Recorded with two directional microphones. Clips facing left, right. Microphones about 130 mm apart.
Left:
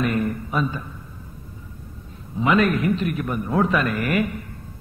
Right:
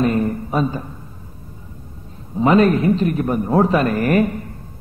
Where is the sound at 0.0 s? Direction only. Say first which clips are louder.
Right 5 dB; 30° right (ahead or behind).